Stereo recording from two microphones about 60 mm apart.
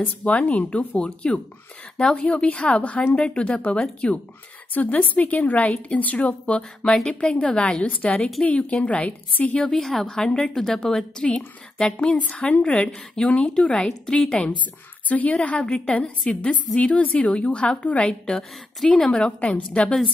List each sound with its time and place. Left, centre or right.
0.0 s a woman's voice: left
9.6 s a woman's voice: centre